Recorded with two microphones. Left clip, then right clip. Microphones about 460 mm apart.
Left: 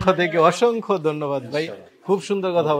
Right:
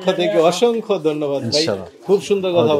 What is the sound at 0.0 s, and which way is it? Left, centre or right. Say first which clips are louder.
Speech: right 2 dB; left.